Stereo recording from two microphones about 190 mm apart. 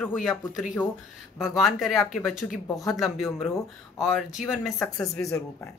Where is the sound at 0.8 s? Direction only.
10° left (ahead or behind).